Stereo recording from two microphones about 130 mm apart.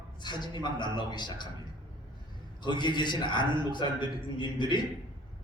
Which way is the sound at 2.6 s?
35° left (ahead or behind).